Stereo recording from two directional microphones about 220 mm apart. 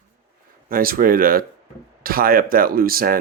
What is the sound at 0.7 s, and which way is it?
Speech, 40° right (ahead or behind).